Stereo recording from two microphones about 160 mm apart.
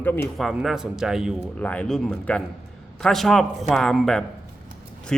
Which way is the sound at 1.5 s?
10° left (ahead or behind).